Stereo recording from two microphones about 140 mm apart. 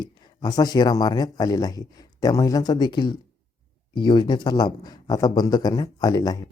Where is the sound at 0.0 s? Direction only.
30° left (ahead or behind).